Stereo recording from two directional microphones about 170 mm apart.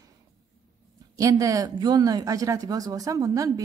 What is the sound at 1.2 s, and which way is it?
Speech, 20° right (ahead or behind).